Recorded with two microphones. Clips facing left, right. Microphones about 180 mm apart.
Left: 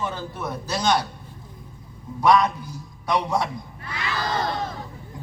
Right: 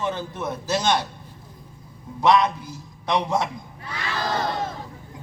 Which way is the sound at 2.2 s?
25° right (ahead or behind).